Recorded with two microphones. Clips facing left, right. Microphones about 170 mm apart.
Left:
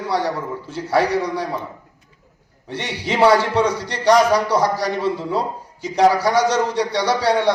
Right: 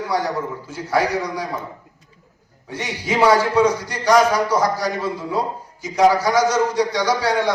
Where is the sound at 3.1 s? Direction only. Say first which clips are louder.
Left 1 dB; 30° left (ahead or behind).